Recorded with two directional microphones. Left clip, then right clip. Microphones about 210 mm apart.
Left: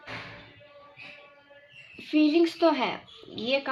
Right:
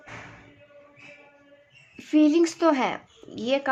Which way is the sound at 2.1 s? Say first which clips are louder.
Right 3 dB; 45° right (ahead or behind).